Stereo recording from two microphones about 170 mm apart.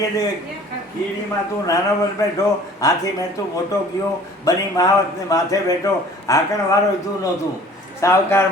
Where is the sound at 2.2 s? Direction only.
20° left (ahead or behind).